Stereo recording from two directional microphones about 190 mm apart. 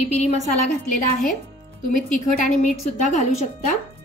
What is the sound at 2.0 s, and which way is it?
A woman's voice, 45° left (ahead or behind).